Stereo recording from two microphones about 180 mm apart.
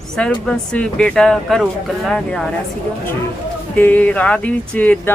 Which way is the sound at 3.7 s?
10° left (ahead or behind).